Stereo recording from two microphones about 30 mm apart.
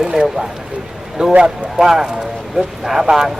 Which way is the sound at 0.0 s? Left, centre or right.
Centre.